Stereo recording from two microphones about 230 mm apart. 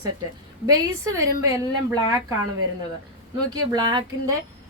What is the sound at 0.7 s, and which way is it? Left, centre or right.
Speech, centre.